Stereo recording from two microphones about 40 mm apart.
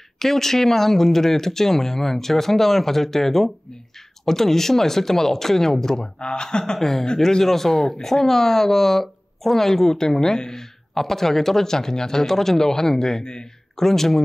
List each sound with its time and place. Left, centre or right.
0.2 s speech: centre
6.8 s speech: centre
13.8 s speech: centre